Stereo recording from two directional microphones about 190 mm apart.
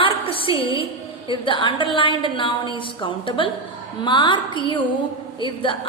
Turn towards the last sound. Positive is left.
turn(degrees=25)  # may be behind; listen again after turning